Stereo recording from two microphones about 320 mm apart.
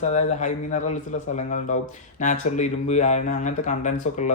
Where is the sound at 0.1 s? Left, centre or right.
Left.